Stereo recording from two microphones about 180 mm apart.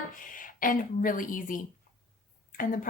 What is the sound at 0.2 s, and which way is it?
A woman's voice, 50° left (ahead or behind).